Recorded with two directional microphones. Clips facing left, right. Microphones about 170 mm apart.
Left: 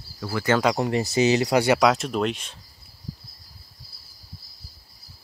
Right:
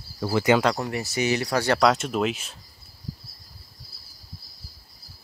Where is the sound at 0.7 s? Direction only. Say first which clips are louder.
Left 6 dB; 25° left (ahead or behind); by 2.5 s 5° right (ahead or behind).